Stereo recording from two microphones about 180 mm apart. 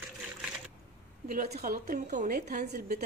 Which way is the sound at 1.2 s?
45° right (ahead or behind).